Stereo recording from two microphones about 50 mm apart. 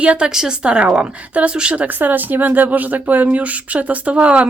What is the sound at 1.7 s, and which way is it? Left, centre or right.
Speech, right.